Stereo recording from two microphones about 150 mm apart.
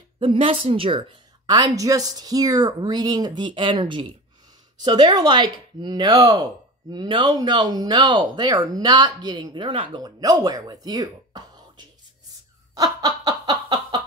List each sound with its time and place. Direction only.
0.2 s speech: 35° right (ahead or behind)
12.7 s snicker: 25° right (ahead or behind)